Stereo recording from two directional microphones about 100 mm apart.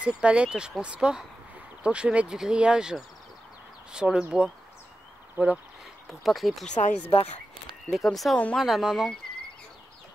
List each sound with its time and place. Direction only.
0.0 s speech: 10° right (ahead or behind)
5.4 s speech: 20° right (ahead or behind)
6.0 s speech: centre (ahead or behind)
7.1 s speech: 70° left (ahead or behind)
7.9 s speech: centre (ahead or behind)